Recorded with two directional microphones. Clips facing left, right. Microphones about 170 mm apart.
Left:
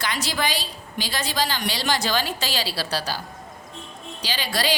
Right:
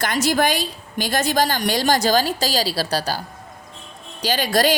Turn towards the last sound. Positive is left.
turn(degrees=-45)  # may be behind; listen again after turning